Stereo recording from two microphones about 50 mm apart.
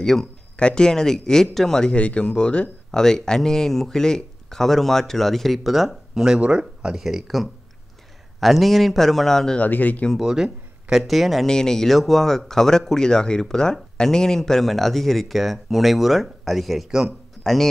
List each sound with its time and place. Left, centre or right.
0.0 s speech: centre
0.6 s speech: centre
9.6 s speech: left
10.2 s speech: centre
11.4 s speech: centre
17.4 s a sound: centre